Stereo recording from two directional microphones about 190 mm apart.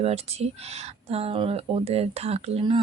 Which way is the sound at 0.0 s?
35° right (ahead or behind).